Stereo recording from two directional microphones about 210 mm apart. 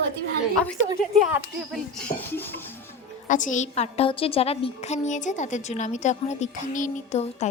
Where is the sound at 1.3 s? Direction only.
Centre (ahead or behind).